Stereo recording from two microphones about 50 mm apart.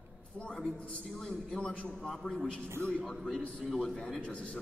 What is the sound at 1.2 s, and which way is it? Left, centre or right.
A woman's voice, centre.